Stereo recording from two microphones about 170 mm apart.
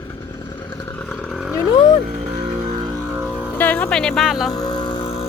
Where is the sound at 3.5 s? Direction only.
10° left (ahead or behind).